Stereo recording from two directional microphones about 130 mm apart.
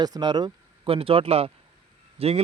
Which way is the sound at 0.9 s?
45° right (ahead or behind).